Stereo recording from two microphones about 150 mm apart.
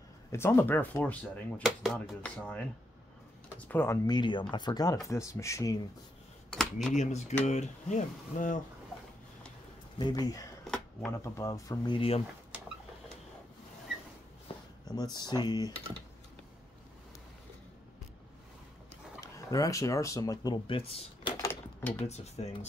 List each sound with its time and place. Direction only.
0.3 s speech: 15° left (ahead or behind)
6.5 s speech: centre (ahead or behind)
7.0 s speech: 50° left (ahead or behind)
9.9 s speech: 30° left (ahead or behind)
10.6 s a sound: 5° left (ahead or behind)
11.1 s speech: 20° left (ahead or behind); by 12.2 s 35° left (ahead or behind)
14.5 s a sound: 35° left (ahead or behind)
15.1 s speech: 30° left (ahead or behind)
19.2 s speech: 20° left (ahead or behind)
21.4 s drawer open or close: 15° left (ahead or behind)
22.0 s speech: 45° left (ahead or behind)